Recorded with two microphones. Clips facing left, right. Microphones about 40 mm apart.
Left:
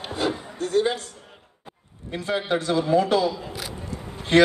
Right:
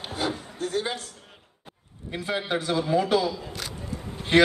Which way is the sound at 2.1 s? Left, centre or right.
Centre.